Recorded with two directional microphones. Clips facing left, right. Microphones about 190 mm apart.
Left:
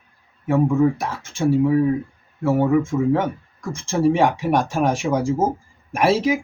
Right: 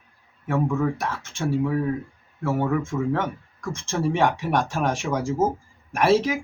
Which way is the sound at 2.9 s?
20° left (ahead or behind).